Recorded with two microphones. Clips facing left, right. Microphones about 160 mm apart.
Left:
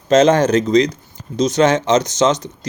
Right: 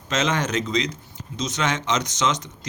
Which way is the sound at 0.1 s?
35° left (ahead or behind).